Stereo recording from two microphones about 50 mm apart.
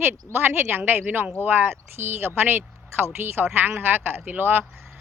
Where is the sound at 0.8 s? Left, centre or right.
Right.